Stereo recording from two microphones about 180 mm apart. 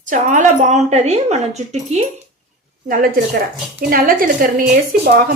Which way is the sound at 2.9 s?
55° right (ahead or behind).